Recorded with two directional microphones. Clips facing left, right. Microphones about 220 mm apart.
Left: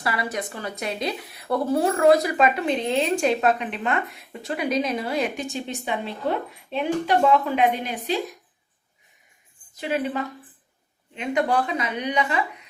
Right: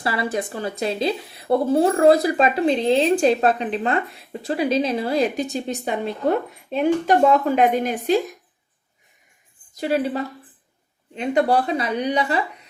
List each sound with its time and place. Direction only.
0.0 s speech: 30° right (ahead or behind); by 8.2 s 45° right (ahead or behind)
9.7 s speech: 40° right (ahead or behind)